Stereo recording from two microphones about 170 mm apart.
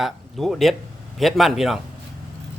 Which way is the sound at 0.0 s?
Centre (ahead or behind).